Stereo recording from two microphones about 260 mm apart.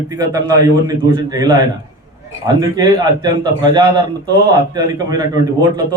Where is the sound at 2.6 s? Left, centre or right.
Centre.